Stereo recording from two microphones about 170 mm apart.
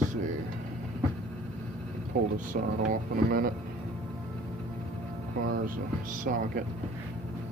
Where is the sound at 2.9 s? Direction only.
60° right (ahead or behind).